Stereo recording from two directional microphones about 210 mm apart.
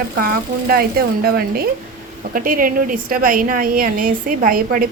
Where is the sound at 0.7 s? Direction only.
45° right (ahead or behind).